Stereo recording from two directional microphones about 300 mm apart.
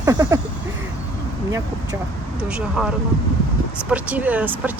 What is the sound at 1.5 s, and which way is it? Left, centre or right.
Speech, centre.